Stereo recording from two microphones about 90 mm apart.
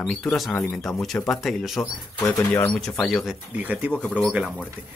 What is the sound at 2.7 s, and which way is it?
Speech, 10° left (ahead or behind).